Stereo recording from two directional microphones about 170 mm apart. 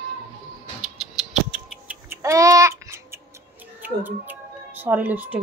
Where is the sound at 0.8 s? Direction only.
5° right (ahead or behind).